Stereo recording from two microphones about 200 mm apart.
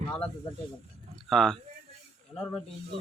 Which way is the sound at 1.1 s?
Centre (ahead or behind).